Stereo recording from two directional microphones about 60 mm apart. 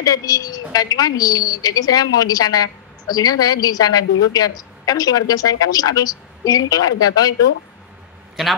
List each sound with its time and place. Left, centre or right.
0.0 s a woman's voice: left